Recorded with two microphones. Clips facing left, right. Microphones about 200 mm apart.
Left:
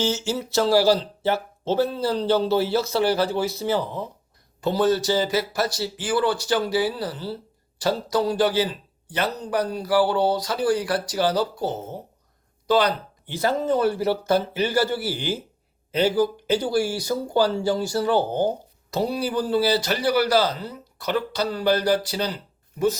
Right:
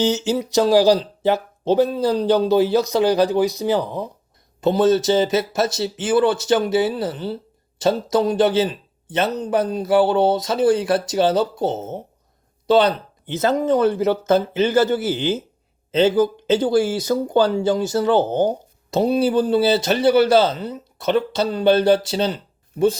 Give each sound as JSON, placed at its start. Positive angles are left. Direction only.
{"t": 0.0, "sound": "speech", "side_deg": -15}